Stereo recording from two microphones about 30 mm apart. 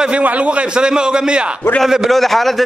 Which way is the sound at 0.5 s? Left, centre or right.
Right.